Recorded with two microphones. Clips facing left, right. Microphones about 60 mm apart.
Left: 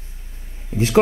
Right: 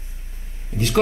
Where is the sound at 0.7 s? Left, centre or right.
Left.